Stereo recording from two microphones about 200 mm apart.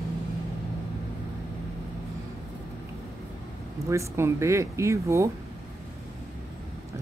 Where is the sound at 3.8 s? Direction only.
15° right (ahead or behind).